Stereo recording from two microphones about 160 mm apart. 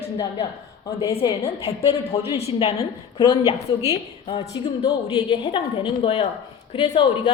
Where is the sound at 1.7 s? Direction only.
40° left (ahead or behind).